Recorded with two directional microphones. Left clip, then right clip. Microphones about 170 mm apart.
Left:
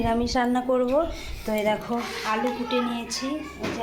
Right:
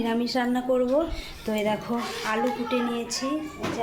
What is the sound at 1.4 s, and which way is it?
A woman's voice, 20° right (ahead or behind).